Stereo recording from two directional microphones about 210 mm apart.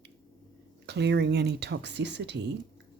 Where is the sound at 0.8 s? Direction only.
55° right (ahead or behind).